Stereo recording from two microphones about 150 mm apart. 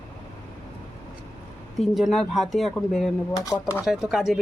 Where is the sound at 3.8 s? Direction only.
5° right (ahead or behind).